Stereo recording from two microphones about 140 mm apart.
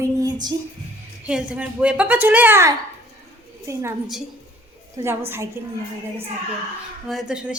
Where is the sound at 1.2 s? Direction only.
10° right (ahead or behind).